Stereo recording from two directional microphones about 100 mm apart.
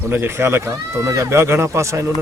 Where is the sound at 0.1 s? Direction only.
25° right (ahead or behind).